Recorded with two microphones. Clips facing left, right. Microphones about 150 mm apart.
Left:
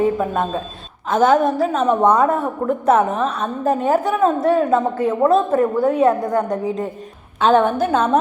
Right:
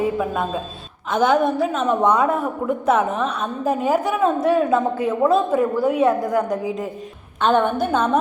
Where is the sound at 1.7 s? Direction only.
30° left (ahead or behind).